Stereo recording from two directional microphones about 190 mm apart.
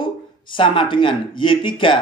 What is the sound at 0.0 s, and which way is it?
A man's voice, 25° left (ahead or behind).